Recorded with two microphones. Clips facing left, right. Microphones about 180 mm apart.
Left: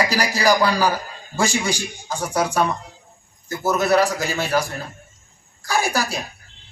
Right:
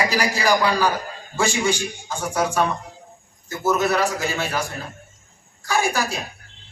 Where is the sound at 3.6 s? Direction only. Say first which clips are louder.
Left 2 dB; 35° left (ahead or behind).